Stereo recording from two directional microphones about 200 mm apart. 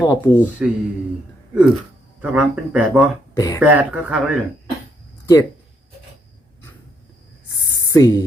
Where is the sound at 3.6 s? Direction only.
5° right (ahead or behind).